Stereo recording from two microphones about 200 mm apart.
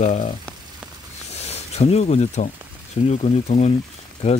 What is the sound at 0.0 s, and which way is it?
Speech, 35° left (ahead or behind).